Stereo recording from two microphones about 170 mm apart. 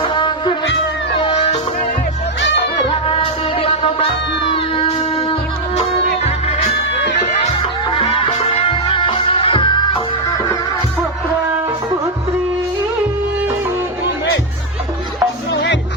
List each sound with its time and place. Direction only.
0.0 s music: 30° left (ahead or behind)
3.1 s music: 35° left (ahead or behind)
7.9 s music: 30° left (ahead or behind)
15.5 s music: 90° left